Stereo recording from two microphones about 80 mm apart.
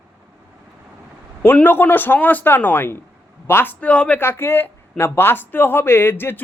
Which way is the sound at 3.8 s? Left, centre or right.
Centre.